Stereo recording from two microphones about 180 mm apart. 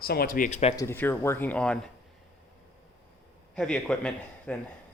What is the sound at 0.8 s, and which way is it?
Speech, 10° left (ahead or behind).